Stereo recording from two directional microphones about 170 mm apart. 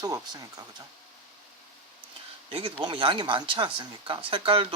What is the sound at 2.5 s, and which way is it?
Speech, 30° right (ahead or behind).